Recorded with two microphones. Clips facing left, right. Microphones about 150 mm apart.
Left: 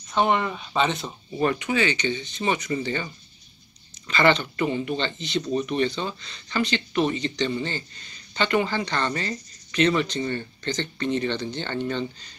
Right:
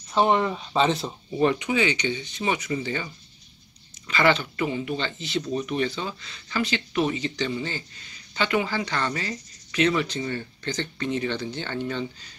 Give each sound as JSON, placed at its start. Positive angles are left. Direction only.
{"t": 0.6, "sound": "speech", "side_deg": -30}
{"t": 1.4, "sound": "speech", "side_deg": -15}
{"t": 4.1, "sound": "speech", "side_deg": -5}